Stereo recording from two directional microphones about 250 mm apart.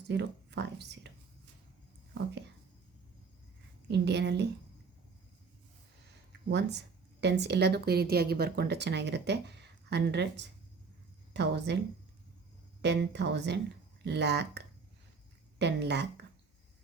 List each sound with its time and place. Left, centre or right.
0.1 s speech: right
3.8 s speech: right
6.5 s a woman's voice: right
12.8 s a woman's voice: right